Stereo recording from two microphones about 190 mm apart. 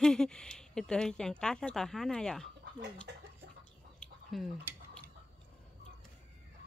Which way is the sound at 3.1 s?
65° right (ahead or behind).